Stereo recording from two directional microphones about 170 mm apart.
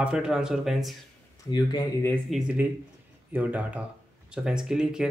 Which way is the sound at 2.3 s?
5° right (ahead or behind).